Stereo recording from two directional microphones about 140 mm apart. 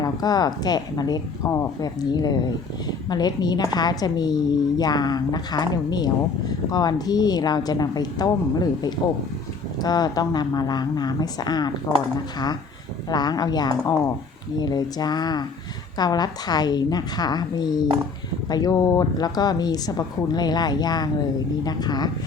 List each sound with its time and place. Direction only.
0.0 s speech: 30° left (ahead or behind)
13.1 s speech: 30° left (ahead or behind)
17.8 s speech: 40° right (ahead or behind)
18.4 s speech: 30° left (ahead or behind)